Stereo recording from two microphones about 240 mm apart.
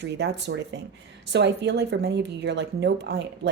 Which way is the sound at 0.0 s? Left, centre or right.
Right.